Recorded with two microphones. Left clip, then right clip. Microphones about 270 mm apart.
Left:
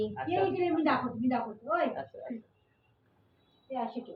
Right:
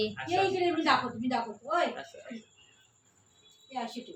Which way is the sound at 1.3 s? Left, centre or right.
Centre.